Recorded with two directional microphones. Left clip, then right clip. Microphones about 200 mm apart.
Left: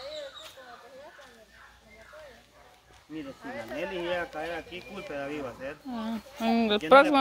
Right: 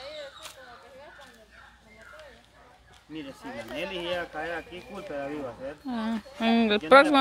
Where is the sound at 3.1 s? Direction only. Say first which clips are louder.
Even; 25° right (ahead or behind).